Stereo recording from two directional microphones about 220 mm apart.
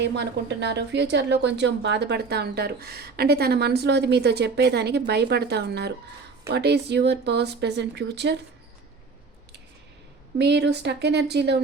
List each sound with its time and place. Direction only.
0.0 s a woman's voice: 50° right (ahead or behind)
10.3 s a woman's voice: 50° right (ahead or behind)